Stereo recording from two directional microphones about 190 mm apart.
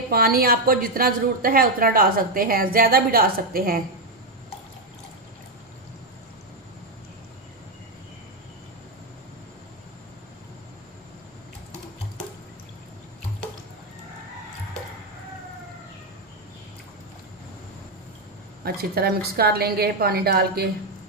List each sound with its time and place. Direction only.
0.1 s a woman's voice: 55° right (ahead or behind)
18.6 s a woman's voice: 55° right (ahead or behind)